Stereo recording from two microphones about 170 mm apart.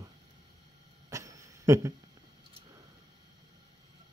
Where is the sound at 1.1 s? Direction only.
20° right (ahead or behind).